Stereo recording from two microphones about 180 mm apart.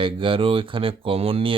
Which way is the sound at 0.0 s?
30° right (ahead or behind).